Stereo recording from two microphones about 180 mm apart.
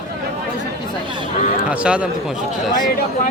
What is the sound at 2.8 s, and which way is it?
Speech, 50° left (ahead or behind).